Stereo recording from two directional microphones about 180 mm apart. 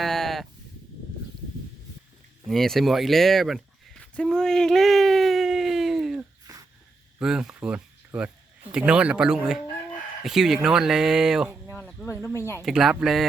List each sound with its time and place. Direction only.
0.0 s sheep: centre (ahead or behind)
2.5 s a sound: centre (ahead or behind)
6.5 s wheeze: 20° right (ahead or behind)
7.2 s speech: 5° right (ahead or behind)
11.7 s a sound: 5° left (ahead or behind)
12.2 s speech: 15° left (ahead or behind)
12.6 s speech: centre (ahead or behind)